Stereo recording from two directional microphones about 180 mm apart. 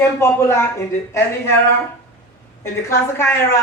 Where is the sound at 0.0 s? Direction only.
15° left (ahead or behind).